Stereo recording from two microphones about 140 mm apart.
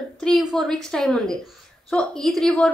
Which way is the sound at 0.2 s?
Centre (ahead or behind).